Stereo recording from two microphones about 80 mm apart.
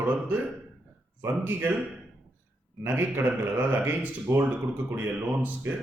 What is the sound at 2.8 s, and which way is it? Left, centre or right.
Speech, right.